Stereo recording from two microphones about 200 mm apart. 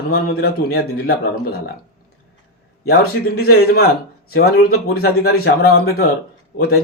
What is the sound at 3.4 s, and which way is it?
A man's voice, 50° left (ahead or behind).